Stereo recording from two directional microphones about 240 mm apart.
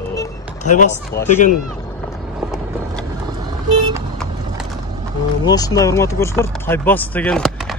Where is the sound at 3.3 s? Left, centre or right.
Centre.